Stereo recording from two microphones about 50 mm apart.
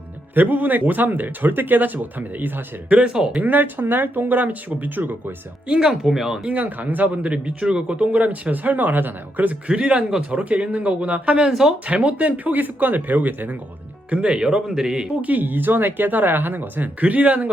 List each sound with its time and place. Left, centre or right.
0.3 s speech: right
3.0 s speech: right
3.4 s speech: right
5.6 s a man's voice: centre
6.1 s a man's voice: centre
6.5 s speech: right
11.3 s a man's voice: centre
11.9 s speech: right
14.1 s speech: right
14.4 s a man's voice: centre
15.2 s speech: right